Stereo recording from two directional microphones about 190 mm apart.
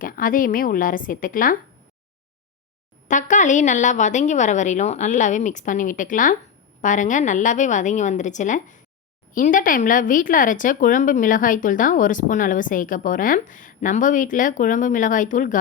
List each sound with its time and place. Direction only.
0.0 s speech: 45° left (ahead or behind)
3.1 s a woman's voice: 40° left (ahead or behind)